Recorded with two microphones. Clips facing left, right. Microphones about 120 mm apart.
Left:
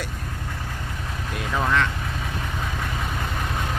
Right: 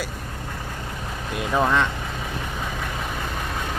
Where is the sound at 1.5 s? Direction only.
20° right (ahead or behind).